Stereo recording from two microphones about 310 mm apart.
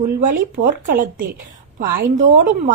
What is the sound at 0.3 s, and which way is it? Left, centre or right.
A woman's voice, right.